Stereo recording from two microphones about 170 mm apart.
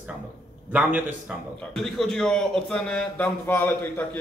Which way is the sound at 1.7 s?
Centre (ahead or behind).